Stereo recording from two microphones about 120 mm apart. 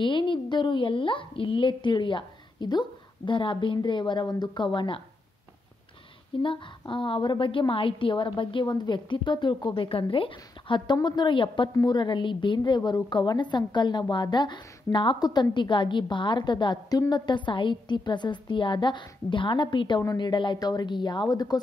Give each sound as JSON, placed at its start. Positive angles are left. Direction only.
{"t": 0.0, "sound": "a woman's voice", "side_deg": 45}
{"t": 6.4, "sound": "a woman's voice", "side_deg": 45}